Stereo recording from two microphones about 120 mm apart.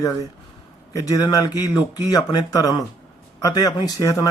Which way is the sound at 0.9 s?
30° left (ahead or behind).